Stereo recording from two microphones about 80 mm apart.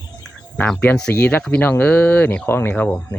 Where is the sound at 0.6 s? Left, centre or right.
Left.